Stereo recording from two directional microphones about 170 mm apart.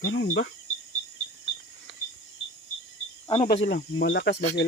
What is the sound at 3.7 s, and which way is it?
Speech, 90° left.